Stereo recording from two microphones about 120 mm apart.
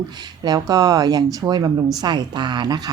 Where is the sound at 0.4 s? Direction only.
30° right (ahead or behind).